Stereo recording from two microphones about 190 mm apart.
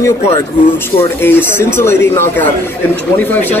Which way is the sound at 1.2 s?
10° left (ahead or behind).